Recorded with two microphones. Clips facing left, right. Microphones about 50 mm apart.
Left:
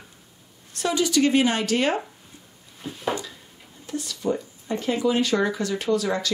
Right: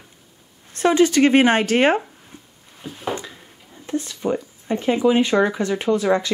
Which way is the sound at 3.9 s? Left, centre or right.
Right.